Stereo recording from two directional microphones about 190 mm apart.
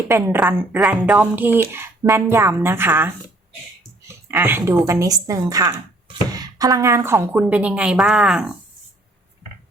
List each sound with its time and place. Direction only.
0.1 s a woman's voice: 10° right (ahead or behind)
4.3 s a woman's voice: 10° right (ahead or behind)